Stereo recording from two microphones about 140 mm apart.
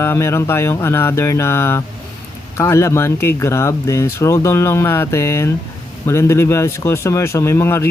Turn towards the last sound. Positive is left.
turn(degrees=15)  # may be behind; listen again after turning